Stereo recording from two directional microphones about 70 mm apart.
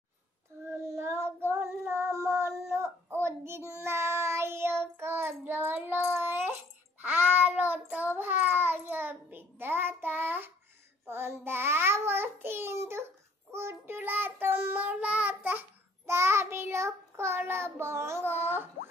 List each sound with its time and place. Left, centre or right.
0.7 s child singing: right
16.1 s child singing: right